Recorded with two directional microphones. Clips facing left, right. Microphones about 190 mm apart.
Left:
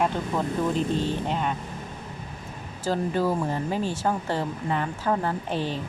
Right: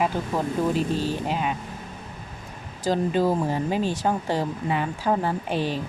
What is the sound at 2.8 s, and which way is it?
Speech, 15° right (ahead or behind).